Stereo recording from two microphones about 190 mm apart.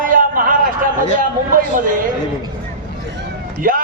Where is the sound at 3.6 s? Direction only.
45° right (ahead or behind).